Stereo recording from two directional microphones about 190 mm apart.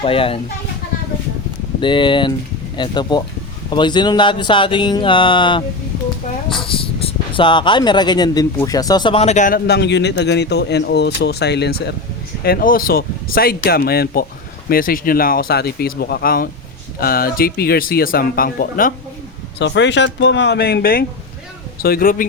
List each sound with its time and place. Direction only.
0.0 s speech: 30° left (ahead or behind)
1.8 s speech: 25° left (ahead or behind)
9.6 s speech: 60° left (ahead or behind)
19.5 s speech: 70° left (ahead or behind); by 22.3 s 50° left (ahead or behind)